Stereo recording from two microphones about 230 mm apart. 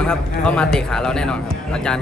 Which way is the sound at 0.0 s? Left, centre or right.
Centre.